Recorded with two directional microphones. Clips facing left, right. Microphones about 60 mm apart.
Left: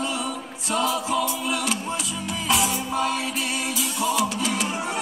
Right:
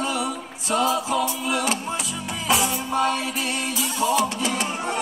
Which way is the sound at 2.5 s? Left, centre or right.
Centre.